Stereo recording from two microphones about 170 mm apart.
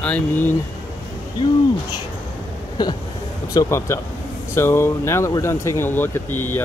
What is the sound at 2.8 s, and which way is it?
Speech, 25° left (ahead or behind).